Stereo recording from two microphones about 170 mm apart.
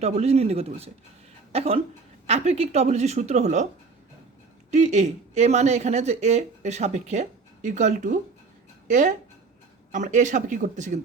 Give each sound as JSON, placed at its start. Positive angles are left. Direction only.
{"t": 0.0, "sound": "speech", "side_deg": -40}
{"t": 4.7, "sound": "speech", "side_deg": -45}